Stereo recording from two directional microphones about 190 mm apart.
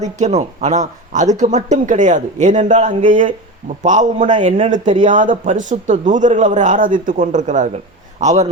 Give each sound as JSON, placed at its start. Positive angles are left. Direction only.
{"t": 0.0, "sound": "a man's voice", "side_deg": -35}